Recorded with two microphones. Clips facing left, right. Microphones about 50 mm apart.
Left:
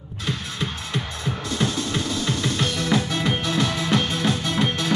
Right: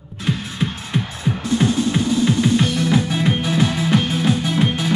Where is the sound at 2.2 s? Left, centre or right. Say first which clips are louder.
Right 7 dB; centre.